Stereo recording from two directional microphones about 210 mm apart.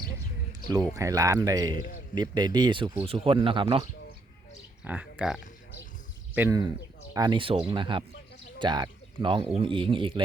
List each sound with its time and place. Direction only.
0.9 s speech: 15° right (ahead or behind)
4.9 s speech: 5° right (ahead or behind); by 10.2 s 25° right (ahead or behind)